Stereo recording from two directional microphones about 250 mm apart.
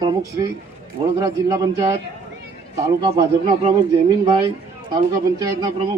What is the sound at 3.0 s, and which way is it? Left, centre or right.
A man's voice, centre.